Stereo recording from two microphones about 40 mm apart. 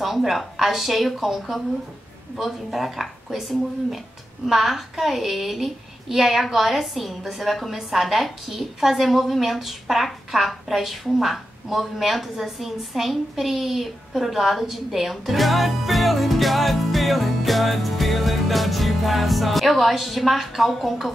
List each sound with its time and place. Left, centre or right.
0.0 s a woman's voice: centre